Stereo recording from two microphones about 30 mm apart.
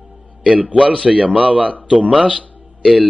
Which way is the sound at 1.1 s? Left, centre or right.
Right.